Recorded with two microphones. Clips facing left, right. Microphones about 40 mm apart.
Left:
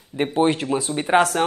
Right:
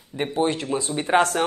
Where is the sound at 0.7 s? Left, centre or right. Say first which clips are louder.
Left 2 dB; centre.